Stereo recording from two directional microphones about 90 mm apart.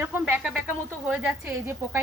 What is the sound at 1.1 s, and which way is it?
Speech, 10° right (ahead or behind).